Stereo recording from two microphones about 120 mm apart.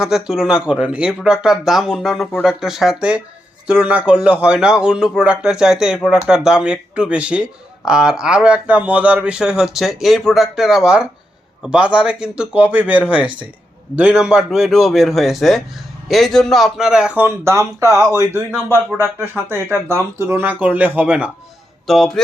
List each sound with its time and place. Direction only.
0.0 s a man's voice: 5° right (ahead or behind)
17.2 s a man's voice: 20° right (ahead or behind)
21.8 s speech: centre (ahead or behind)